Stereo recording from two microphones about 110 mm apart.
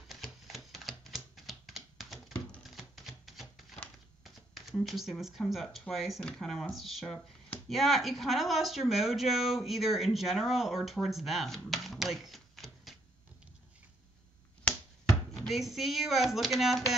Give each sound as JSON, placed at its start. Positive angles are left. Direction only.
{"t": 0.1, "sound": "typewriter", "side_deg": 0}
{"t": 3.7, "sound": "a sound", "side_deg": 0}
{"t": 4.2, "sound": "speech", "side_deg": 0}
{"t": 15.3, "sound": "speech", "side_deg": 0}